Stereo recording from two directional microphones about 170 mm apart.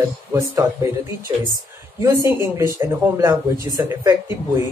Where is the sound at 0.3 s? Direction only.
20° right (ahead or behind).